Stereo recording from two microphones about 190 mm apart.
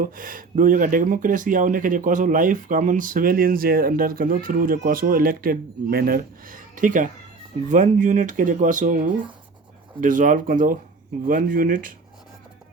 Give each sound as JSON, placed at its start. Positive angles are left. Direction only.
{"t": 0.0, "sound": "speech", "side_deg": -45}
{"t": 10.0, "sound": "speech", "side_deg": -45}